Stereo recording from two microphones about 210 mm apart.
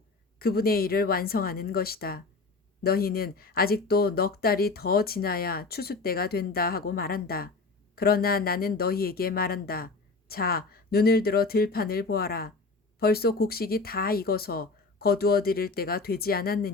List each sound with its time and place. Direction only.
0.3 s speech: 45° left (ahead or behind)